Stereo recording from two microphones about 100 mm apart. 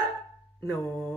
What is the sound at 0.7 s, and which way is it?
Music, 5° left (ahead or behind).